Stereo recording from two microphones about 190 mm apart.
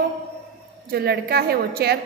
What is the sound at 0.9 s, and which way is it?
A woman's voice, 55° right (ahead or behind).